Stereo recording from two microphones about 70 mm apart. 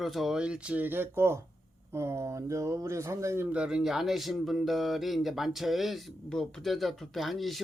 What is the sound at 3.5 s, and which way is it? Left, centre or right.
A man's voice, centre.